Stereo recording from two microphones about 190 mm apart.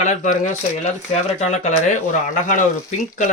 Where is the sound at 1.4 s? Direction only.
40° left (ahead or behind).